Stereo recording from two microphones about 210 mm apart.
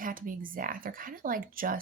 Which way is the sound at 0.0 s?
40° right (ahead or behind).